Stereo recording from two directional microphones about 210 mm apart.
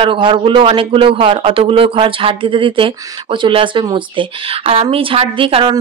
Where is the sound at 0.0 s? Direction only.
25° right (ahead or behind).